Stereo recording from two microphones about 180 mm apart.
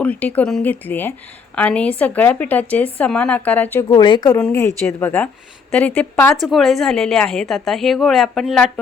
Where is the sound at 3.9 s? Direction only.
25° left (ahead or behind).